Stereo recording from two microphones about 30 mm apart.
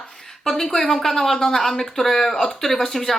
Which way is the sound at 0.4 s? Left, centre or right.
Centre.